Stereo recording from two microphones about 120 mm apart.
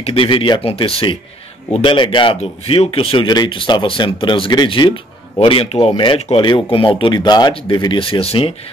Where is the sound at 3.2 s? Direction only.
35° left (ahead or behind).